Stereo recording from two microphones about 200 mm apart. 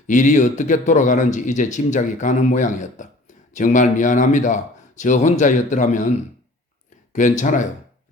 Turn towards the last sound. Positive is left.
turn(degrees=40)  # may be behind; listen again after turning